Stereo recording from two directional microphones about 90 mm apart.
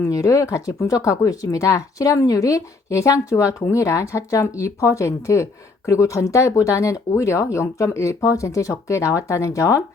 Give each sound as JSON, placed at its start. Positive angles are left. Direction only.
{"t": 0.0, "sound": "speech", "side_deg": 40}